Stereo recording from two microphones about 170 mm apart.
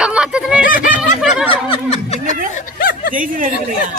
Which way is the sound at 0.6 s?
55° left (ahead or behind).